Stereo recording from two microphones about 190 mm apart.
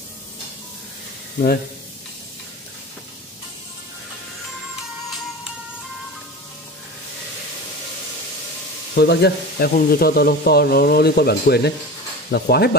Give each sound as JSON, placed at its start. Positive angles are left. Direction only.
{"t": 8.9, "sound": "speech", "side_deg": 60}